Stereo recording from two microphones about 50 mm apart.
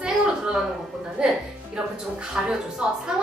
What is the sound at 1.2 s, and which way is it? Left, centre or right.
Music, centre.